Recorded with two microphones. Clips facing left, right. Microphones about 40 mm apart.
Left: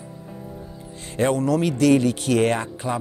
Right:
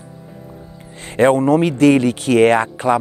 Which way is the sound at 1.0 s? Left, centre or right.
Right.